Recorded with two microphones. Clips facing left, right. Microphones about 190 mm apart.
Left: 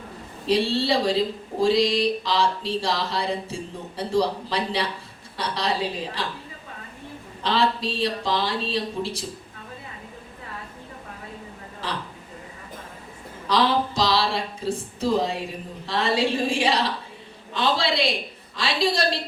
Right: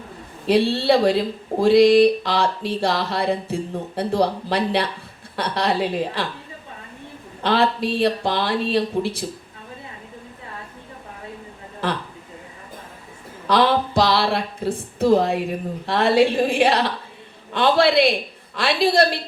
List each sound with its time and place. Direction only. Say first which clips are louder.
0.4 s speech: right 4 dB; 60° right (ahead or behind)
7.4 s speech: right 4 dB; 60° right (ahead or behind)
13.5 s speech: right 4 dB; 60° right (ahead or behind)